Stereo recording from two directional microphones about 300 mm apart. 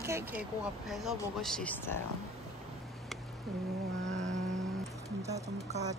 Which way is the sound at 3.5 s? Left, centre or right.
Centre.